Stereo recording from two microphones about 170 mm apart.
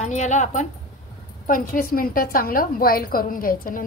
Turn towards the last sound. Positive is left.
turn(degrees=55)  # may be behind; listen again after turning